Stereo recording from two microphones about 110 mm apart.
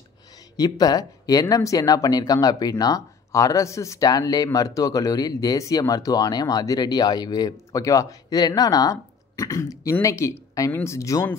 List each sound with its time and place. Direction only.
0.6 s speech: 35° left (ahead or behind)